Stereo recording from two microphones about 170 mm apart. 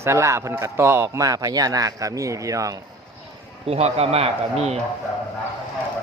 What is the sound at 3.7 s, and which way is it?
Speech, 40° right (ahead or behind).